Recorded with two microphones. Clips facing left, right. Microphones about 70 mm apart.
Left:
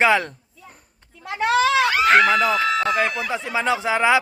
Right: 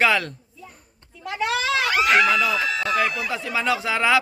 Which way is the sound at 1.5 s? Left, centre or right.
Left.